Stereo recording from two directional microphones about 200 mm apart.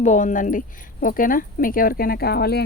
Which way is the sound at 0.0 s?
40° left (ahead or behind).